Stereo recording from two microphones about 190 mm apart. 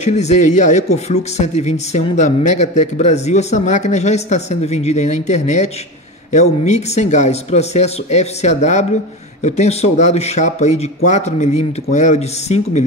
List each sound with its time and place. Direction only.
0.0 s speech: 35° left (ahead or behind)